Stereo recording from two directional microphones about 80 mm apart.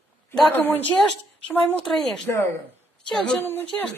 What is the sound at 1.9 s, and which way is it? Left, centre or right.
Speech, centre.